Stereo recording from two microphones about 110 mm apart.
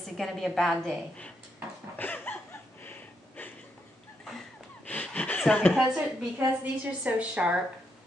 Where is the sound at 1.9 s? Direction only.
15° left (ahead or behind).